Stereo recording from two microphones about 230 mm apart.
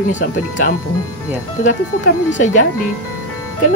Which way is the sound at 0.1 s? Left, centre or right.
Left.